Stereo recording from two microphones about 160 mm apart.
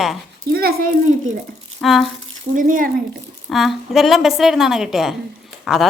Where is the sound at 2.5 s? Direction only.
60° right (ahead or behind).